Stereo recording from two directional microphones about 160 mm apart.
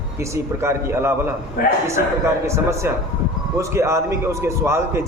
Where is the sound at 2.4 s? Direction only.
15° right (ahead or behind).